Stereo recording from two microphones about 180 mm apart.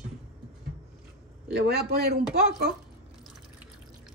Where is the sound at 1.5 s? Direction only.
65° right (ahead or behind).